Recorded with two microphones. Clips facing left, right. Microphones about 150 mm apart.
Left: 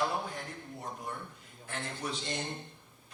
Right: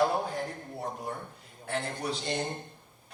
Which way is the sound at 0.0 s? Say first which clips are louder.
Right 6 dB; 35° right (ahead or behind).